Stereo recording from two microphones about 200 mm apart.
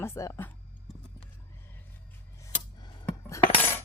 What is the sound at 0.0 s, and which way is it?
Speech, 15° left (ahead or behind).